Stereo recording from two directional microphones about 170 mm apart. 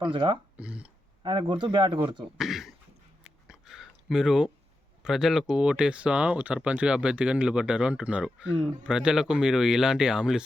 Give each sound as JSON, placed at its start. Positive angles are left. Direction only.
{"t": 0.0, "sound": "speech", "side_deg": -30}
{"t": 0.5, "sound": "speech", "side_deg": -5}
{"t": 1.2, "sound": "speech", "side_deg": -30}
{"t": 2.2, "sound": "speech", "side_deg": 0}
{"t": 3.2, "sound": "a sound", "side_deg": -5}
{"t": 5.0, "sound": "speech", "side_deg": 0}